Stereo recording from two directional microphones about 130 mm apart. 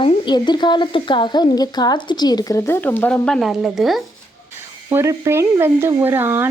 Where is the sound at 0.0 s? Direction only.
35° left (ahead or behind); by 4.0 s centre (ahead or behind).